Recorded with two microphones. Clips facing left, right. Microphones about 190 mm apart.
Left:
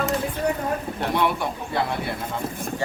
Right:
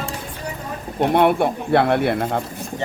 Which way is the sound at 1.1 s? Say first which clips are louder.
Right 8 dB; 55° right (ahead or behind).